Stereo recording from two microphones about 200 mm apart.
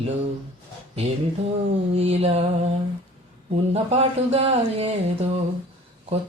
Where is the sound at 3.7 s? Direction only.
30° right (ahead or behind).